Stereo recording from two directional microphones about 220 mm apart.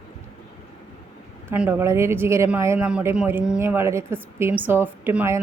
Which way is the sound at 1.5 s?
10° right (ahead or behind).